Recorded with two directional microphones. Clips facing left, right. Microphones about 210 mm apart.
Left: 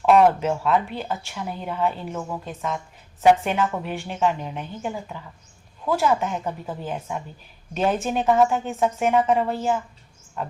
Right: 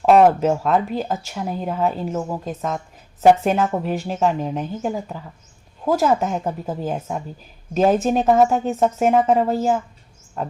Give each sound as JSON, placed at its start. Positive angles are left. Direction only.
{"t": 0.0, "sound": "speech", "side_deg": -35}